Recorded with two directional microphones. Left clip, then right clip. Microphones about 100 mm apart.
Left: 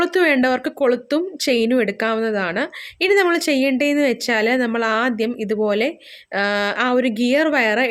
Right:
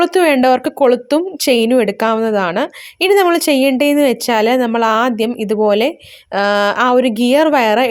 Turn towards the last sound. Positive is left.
turn(degrees=-40)  # may be behind; listen again after turning